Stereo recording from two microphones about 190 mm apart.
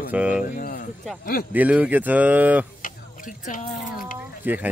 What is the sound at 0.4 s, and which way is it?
Speech, 45° left (ahead or behind).